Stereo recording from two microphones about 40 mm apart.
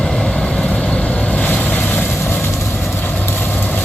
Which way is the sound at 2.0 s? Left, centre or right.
Left.